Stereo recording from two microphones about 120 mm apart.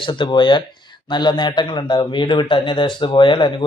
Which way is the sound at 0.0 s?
40° left (ahead or behind).